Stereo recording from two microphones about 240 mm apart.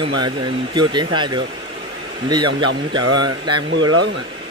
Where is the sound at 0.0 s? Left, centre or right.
Centre.